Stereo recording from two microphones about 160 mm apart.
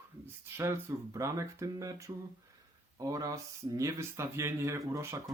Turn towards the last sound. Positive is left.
turn(degrees=-15)  # may be behind; listen again after turning